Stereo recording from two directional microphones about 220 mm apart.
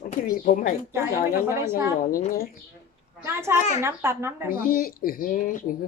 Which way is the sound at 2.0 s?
40° left (ahead or behind).